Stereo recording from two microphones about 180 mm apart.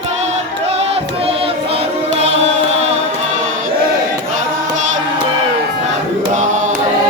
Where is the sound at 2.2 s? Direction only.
35° right (ahead or behind).